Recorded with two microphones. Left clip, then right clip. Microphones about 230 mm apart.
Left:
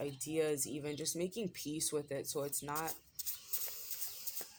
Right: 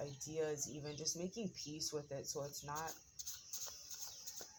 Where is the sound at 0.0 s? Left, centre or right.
Left.